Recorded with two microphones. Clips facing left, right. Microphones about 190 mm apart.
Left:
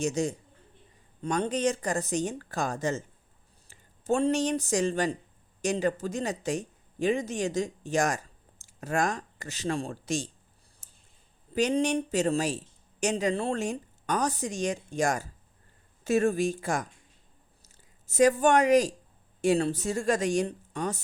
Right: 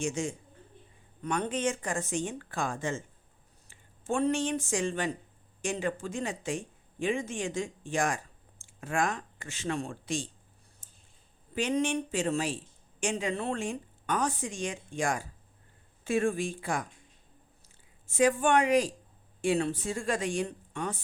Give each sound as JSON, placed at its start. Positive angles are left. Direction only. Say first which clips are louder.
{"t": 0.0, "sound": "speech", "louder": "left 4 dB", "side_deg": 40}
{"t": 11.5, "sound": "speech", "louder": "left 3 dB", "side_deg": 40}